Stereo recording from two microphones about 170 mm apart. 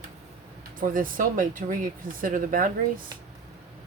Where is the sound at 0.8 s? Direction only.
55° right (ahead or behind).